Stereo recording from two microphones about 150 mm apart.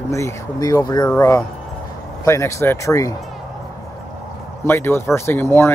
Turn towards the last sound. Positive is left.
turn(degrees=15)  # may be behind; listen again after turning